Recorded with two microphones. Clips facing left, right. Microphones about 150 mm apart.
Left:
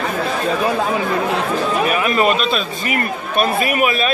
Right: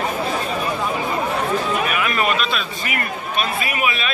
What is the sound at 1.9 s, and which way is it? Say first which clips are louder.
Speech: left 5 dB; 30° left (ahead or behind).